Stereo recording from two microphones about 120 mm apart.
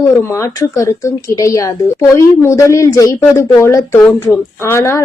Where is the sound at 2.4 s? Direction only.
25° left (ahead or behind).